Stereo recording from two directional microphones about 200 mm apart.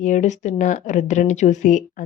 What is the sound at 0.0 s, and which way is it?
Speech, 35° left (ahead or behind).